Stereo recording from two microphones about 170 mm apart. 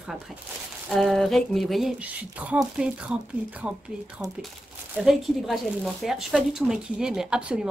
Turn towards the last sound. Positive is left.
turn(degrees=-5)  # may be behind; listen again after turning